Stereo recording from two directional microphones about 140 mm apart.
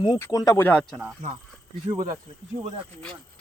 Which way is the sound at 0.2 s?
25° left (ahead or behind).